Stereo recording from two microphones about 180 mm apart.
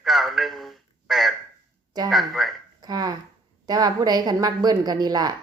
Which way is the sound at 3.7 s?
20° right (ahead or behind).